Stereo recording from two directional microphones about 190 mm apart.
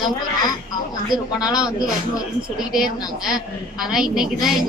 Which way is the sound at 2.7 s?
5° right (ahead or behind).